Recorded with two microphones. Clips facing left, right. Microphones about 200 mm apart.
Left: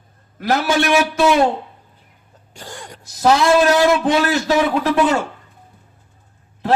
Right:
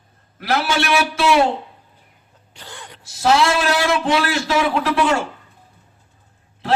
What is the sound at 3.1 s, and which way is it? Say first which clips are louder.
A man's voice: left 3 dB; 45° left (ahead or behind).